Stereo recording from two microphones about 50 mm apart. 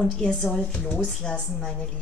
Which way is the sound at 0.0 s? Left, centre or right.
Centre.